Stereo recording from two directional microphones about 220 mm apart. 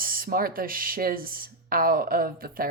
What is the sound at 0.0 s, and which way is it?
Speech, 40° right (ahead or behind).